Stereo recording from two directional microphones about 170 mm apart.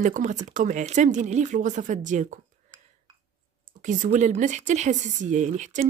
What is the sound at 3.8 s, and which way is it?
Speech, 45° right (ahead or behind).